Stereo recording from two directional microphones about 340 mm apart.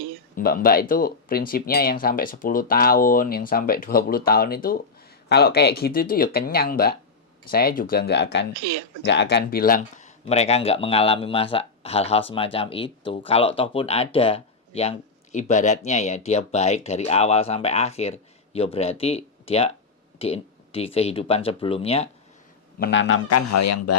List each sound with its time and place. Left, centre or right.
0.3 s speech: left
8.5 s speech: right
9.0 s speech: left
22.8 s speech: left
23.5 s speech: left